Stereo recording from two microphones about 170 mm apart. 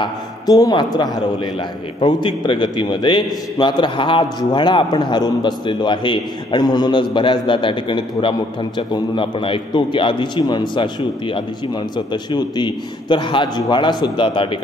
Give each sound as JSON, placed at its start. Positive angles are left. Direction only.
{"t": 0.0, "sound": "a man's voice", "side_deg": 25}